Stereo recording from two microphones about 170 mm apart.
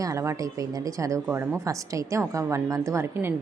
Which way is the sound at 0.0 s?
15° right (ahead or behind).